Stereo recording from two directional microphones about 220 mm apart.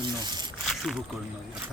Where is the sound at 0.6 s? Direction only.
Centre (ahead or behind).